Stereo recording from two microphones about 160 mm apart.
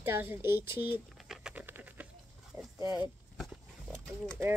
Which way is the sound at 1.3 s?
5° right (ahead or behind).